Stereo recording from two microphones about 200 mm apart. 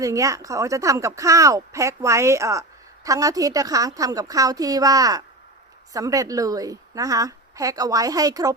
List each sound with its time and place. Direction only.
0.0 s speech: 15° right (ahead or behind)